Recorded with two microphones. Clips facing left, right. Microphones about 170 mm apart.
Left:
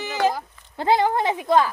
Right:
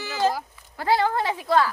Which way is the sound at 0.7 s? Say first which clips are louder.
Left 2 dB; 20° left (ahead or behind).